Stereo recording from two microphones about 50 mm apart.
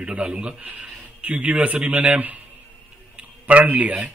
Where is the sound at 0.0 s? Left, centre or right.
Right.